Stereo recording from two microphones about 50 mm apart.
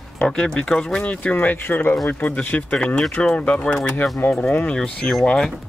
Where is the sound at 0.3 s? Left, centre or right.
Centre.